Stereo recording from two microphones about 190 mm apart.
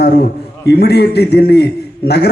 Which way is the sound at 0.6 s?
60° left (ahead or behind).